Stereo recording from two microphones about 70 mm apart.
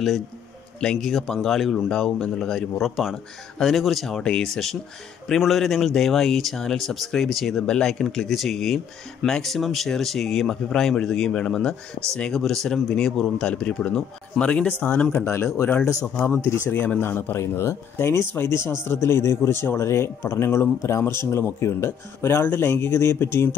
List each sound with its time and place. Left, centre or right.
0.7 s speech: centre
14.8 s speech: left
15.2 s speech: left
15.8 s speech: left
17.0 s speech: left